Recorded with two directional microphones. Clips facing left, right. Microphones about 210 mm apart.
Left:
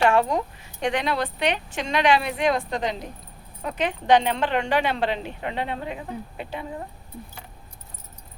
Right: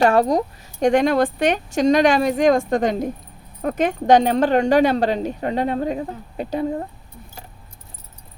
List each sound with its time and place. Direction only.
0.0 s speech: 40° right (ahead or behind)